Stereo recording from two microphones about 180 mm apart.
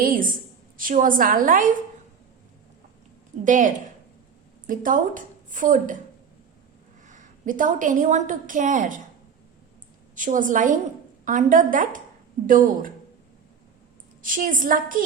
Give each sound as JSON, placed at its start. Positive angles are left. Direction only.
{"t": 0.0, "sound": "speech", "side_deg": -50}
{"t": 3.4, "sound": "speech", "side_deg": -45}
{"t": 7.1, "sound": "a woman's voice", "side_deg": -45}
{"t": 10.2, "sound": "speech", "side_deg": -45}
{"t": 14.2, "sound": "speech", "side_deg": -50}